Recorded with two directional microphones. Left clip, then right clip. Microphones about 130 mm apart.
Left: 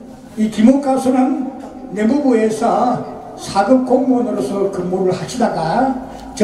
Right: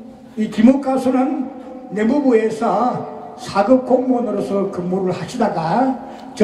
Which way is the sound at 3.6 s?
15° left (ahead or behind).